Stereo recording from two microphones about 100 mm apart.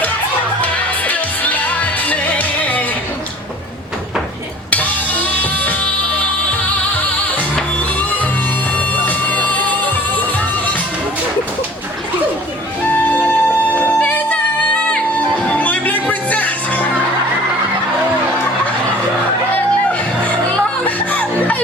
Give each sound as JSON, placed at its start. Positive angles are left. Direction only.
{"t": 0.6, "sound": "music", "side_deg": 15}
{"t": 4.7, "sound": "music", "side_deg": 15}
{"t": 9.0, "sound": "music", "side_deg": 15}
{"t": 12.9, "sound": "music", "side_deg": 20}
{"t": 20.5, "sound": "music", "side_deg": 15}